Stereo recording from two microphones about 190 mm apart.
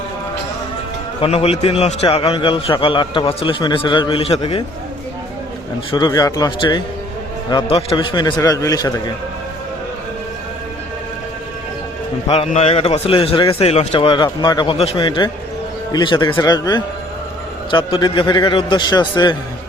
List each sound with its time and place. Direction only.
1.2 s a man's voice: 30° left (ahead or behind)
5.9 s a man's voice: 20° left (ahead or behind)
12.3 s a man's voice: 35° left (ahead or behind)